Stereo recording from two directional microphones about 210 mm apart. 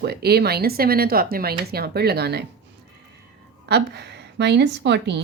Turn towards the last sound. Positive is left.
turn(degrees=-55)  # may be behind; listen again after turning